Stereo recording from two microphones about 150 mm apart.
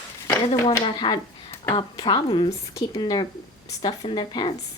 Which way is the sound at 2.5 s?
20° left (ahead or behind).